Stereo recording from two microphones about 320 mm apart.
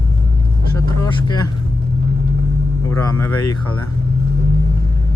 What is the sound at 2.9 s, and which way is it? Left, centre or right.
Speech, centre.